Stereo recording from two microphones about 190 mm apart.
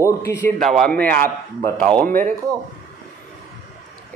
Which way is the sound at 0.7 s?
5° left (ahead or behind).